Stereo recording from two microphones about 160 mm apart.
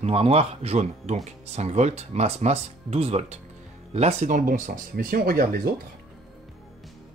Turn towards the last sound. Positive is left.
turn(degrees=-65)  # may be behind; listen again after turning